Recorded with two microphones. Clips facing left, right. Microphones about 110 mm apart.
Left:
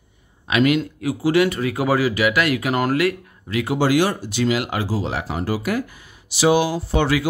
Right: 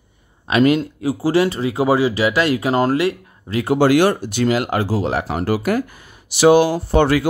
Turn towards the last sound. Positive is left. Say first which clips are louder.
# right 4 dB
turn(degrees=-50)  # may be behind; listen again after turning